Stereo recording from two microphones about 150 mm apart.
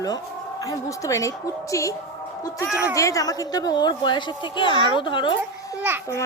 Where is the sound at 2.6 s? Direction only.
5° right (ahead or behind).